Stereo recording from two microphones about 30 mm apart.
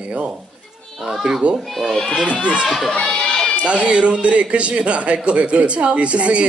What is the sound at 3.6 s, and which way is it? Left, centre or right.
A woman's voice, right.